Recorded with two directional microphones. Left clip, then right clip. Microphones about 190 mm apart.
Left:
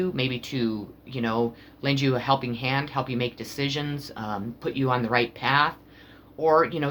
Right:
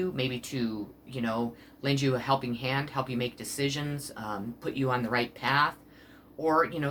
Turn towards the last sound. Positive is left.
turn(degrees=45)  # may be behind; listen again after turning